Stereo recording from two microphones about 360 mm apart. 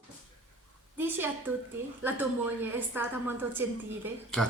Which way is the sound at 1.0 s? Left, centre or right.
Centre.